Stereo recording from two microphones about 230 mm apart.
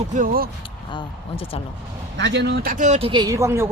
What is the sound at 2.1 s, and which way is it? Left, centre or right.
Speech, right.